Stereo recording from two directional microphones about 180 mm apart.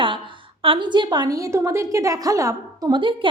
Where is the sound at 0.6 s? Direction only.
25° right (ahead or behind).